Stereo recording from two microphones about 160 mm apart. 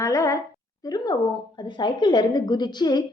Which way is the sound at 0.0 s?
20° left (ahead or behind).